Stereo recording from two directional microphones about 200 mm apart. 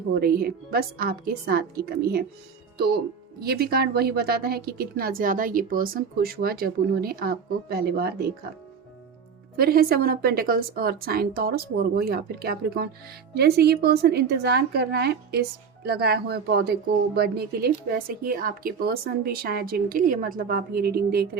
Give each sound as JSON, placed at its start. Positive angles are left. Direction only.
{"t": 0.1, "sound": "speech", "side_deg": -50}
{"t": 3.4, "sound": "speech", "side_deg": -50}
{"t": 9.6, "sound": "speech", "side_deg": -50}